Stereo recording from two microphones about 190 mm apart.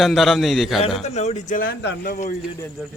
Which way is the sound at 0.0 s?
Centre (ahead or behind).